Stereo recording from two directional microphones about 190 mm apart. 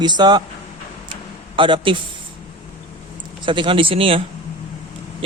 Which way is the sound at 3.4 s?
25° right (ahead or behind).